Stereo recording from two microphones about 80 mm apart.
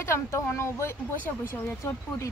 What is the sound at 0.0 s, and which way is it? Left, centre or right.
Speech, left.